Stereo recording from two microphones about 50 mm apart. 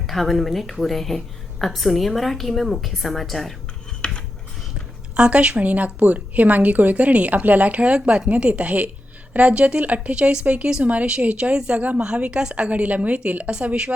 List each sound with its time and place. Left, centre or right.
0.1 s a woman's voice: centre
4.0 s a sound: centre
5.1 s a woman's voice: right
11.8 s a woman's voice: right